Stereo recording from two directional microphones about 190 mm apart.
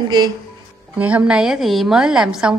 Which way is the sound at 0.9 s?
5° right (ahead or behind).